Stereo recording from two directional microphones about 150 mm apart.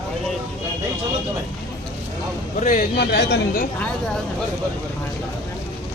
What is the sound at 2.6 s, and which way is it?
Speech, 55° left (ahead or behind).